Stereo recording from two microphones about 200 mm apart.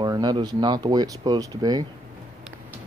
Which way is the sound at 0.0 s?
20° right (ahead or behind).